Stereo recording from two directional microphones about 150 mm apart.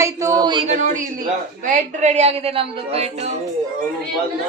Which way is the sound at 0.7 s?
55° right (ahead or behind).